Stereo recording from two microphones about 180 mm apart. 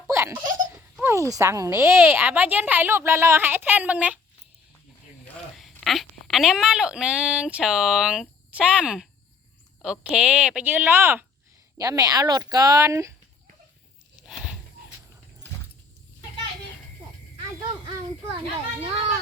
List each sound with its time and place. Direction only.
0.1 s laughter: 15° right (ahead or behind)
1.0 s speech: 15° right (ahead or behind)
5.8 s speech: centre (ahead or behind); by 13.1 s 15° right (ahead or behind)
14.3 s a sound: 5° right (ahead or behind)
18.3 s children playing: 30° right (ahead or behind)